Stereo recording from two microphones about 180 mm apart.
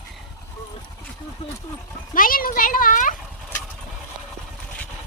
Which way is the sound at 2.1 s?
50° left (ahead or behind).